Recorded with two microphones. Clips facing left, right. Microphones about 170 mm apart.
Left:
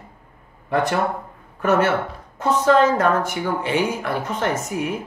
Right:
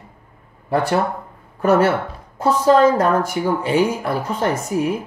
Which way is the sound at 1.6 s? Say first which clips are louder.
Right 3 dB; 35° right (ahead or behind).